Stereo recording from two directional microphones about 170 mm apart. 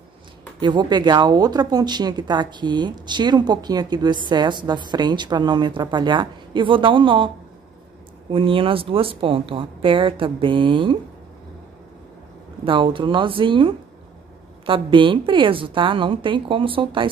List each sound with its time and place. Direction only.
0.6 s speech: 25° right (ahead or behind)
8.3 s speech: 30° right (ahead or behind)
12.6 s speech: 30° right (ahead or behind)